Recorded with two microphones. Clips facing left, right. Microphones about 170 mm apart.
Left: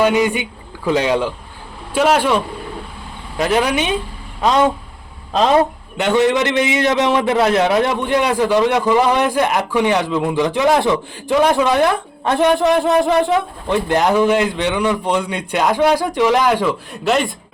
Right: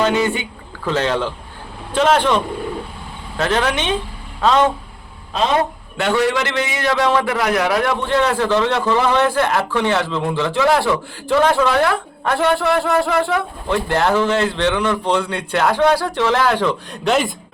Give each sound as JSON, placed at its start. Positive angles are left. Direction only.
{"t": 0.0, "sound": "a man's voice", "side_deg": 15}
{"t": 6.0, "sound": "a man's voice", "side_deg": 20}